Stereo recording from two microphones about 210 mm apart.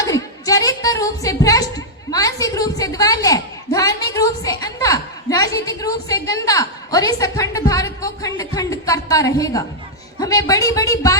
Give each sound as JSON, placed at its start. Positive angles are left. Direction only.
{"t": 0.0, "sound": "music", "side_deg": 15}
{"t": 10.2, "sound": "speech", "side_deg": 15}